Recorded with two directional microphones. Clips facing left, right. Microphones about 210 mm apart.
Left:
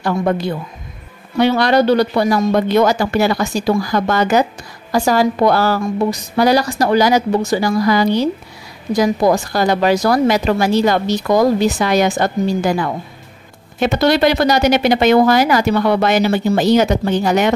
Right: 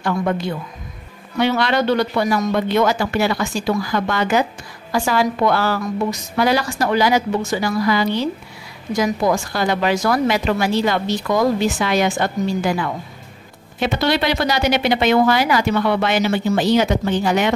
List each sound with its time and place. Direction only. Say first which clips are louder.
0.0 s speech: left 3 dB; 40° left (ahead or behind)